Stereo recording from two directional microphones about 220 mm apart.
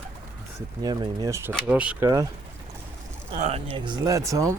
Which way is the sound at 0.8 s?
15° right (ahead or behind).